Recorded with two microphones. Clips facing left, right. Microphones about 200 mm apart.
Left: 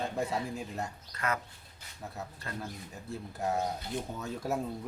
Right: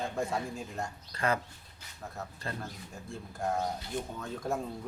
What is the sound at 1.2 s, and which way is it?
Speech, 30° right (ahead or behind).